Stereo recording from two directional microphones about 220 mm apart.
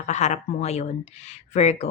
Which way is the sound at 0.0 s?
30° left (ahead or behind).